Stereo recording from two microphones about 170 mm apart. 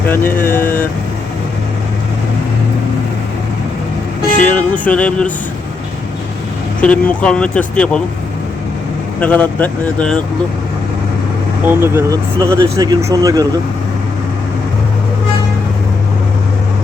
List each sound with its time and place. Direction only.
0.3 s speech: 55° left (ahead or behind)
0.5 s speech: 10° left (ahead or behind)
4.4 s speech: 10° left (ahead or behind)
6.8 s speech: 5° left (ahead or behind)
9.2 s speech: 10° left (ahead or behind)
11.6 s speech: 15° right (ahead or behind)